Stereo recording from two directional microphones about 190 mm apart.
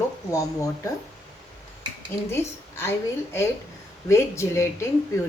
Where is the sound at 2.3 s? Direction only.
10° left (ahead or behind).